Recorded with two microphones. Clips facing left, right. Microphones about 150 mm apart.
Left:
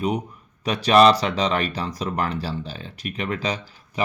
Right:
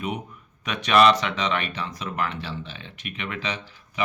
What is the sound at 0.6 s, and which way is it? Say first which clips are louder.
Speech: left 3 dB; 35° left (ahead or behind).